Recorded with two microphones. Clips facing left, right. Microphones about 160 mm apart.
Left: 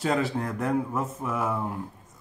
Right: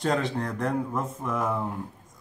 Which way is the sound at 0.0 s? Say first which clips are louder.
Even; 5° left (ahead or behind).